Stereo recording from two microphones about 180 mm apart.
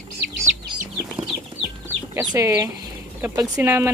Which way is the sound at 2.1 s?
15° right (ahead or behind).